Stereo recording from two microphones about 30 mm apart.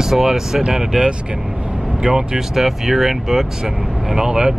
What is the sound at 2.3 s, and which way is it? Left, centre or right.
Speech, centre.